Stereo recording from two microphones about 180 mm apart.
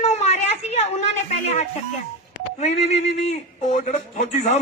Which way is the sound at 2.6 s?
40° left (ahead or behind).